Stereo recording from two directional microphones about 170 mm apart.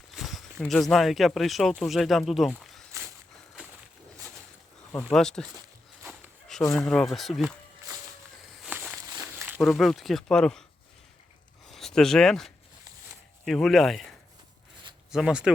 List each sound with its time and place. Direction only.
0.1 s a sound: centre (ahead or behind)
0.6 s speech: 5° left (ahead or behind)
4.9 s speech: 10° left (ahead or behind)
6.7 s speech: 5° left (ahead or behind)
8.6 s walk: 10° right (ahead or behind)
9.0 s walk: 25° right (ahead or behind)
9.6 s speech: centre (ahead or behind)
11.7 s speech: centre (ahead or behind)
15.1 s speech: 5° right (ahead or behind)